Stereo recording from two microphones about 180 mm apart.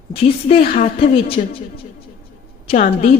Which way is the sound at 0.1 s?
35° left (ahead or behind).